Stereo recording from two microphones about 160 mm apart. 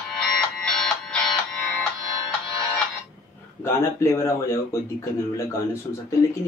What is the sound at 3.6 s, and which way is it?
Speech, 15° left (ahead or behind).